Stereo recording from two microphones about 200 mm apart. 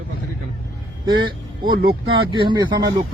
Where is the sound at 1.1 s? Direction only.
25° right (ahead or behind).